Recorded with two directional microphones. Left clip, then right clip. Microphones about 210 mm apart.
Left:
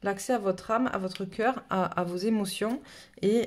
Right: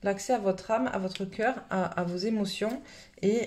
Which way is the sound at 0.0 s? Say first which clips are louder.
Right 1 dB; 30° left (ahead or behind).